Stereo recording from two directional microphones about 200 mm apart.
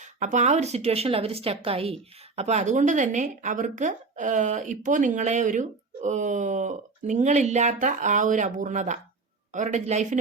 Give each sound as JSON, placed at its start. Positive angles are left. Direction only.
{"t": 0.0, "sound": "speech", "side_deg": -35}